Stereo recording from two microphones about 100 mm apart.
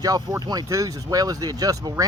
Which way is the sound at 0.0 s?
40° right (ahead or behind).